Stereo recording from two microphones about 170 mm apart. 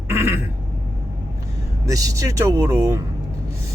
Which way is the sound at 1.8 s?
20° right (ahead or behind).